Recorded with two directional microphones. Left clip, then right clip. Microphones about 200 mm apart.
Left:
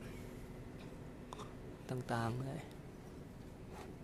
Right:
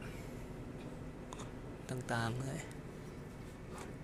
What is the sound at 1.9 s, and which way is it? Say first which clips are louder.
Speech: right 1 dB; 10° left (ahead or behind).